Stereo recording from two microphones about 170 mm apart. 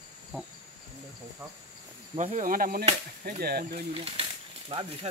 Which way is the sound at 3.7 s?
35° right (ahead or behind).